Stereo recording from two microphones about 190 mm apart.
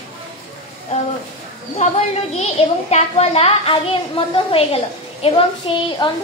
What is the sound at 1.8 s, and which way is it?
A woman's voice, 40° left (ahead or behind).